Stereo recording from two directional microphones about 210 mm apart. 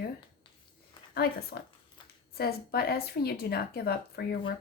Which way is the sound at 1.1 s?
45° left (ahead or behind).